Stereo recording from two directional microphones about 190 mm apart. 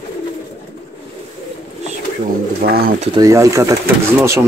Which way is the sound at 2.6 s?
55° right (ahead or behind).